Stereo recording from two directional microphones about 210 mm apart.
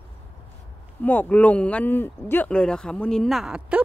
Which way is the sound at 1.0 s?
5° left (ahead or behind).